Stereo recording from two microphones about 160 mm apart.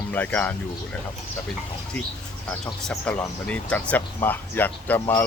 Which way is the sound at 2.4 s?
5° left (ahead or behind).